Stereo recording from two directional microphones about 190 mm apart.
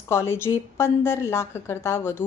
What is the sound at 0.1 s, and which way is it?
A woman's voice, 15° left (ahead or behind).